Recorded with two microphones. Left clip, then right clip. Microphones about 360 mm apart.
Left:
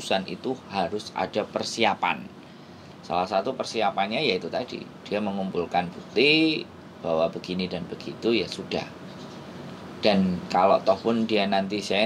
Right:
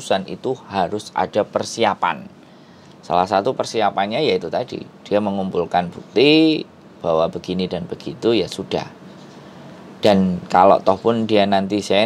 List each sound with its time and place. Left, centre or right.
0.0 s speech: right
3.1 s speech: right
9.9 s speech: right